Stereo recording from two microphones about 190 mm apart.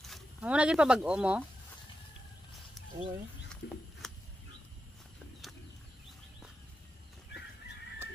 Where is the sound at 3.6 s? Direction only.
70° left (ahead or behind).